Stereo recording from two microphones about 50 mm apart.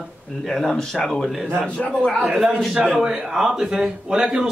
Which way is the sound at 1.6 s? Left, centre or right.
Left.